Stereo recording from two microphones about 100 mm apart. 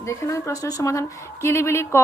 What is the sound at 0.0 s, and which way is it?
Speech, 30° left (ahead or behind).